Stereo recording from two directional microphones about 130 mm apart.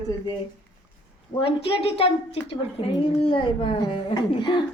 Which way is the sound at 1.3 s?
45° left (ahead or behind).